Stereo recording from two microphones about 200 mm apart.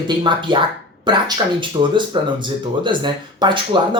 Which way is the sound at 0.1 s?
25° right (ahead or behind).